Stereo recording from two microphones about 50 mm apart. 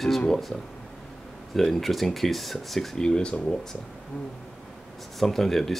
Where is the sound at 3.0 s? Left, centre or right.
Centre.